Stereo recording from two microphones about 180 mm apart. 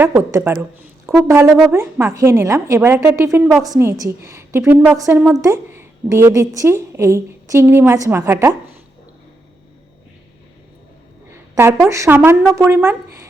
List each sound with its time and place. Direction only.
0.0 s a woman's voice: 10° right (ahead or behind)
3.7 s a woman's voice: 15° right (ahead or behind)
11.9 s a woman's voice: 15° right (ahead or behind)